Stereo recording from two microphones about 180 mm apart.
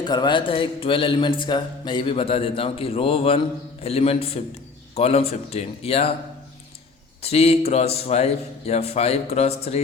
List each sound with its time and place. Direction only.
0.0 s a man's voice: 25° left (ahead or behind)
7.2 s a man's voice: 35° left (ahead or behind)